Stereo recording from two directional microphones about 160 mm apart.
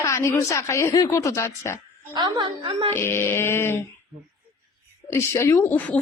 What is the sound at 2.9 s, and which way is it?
Speech, 15° left (ahead or behind).